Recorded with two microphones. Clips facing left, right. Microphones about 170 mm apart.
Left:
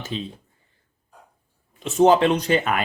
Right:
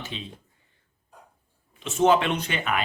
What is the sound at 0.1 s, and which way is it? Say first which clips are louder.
Speech: left 10 dB; 40° left (ahead or behind).